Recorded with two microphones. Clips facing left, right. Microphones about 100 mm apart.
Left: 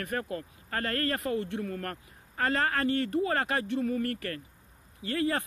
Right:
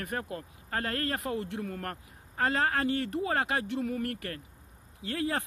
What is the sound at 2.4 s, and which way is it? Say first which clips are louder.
Speech: even; 60° left (ahead or behind).